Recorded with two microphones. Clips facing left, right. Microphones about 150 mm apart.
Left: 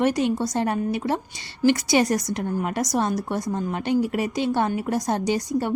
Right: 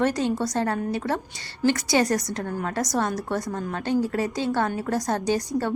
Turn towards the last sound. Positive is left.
turn(degrees=15)  # may be behind; listen again after turning